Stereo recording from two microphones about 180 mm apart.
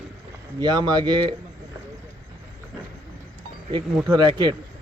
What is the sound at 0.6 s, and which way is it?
Speech, 25° right (ahead or behind).